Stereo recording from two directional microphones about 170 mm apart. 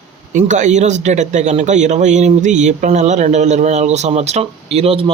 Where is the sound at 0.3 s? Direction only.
45° right (ahead or behind).